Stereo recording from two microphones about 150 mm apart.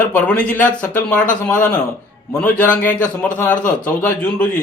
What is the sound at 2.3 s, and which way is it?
Speech, 10° left (ahead or behind).